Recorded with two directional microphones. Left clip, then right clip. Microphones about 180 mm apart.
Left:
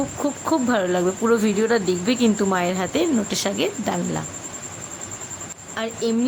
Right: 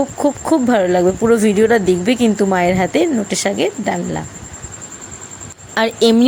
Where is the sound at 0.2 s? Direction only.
20° right (ahead or behind).